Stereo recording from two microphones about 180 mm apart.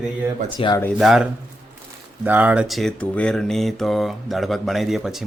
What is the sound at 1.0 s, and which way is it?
Speech, centre (ahead or behind).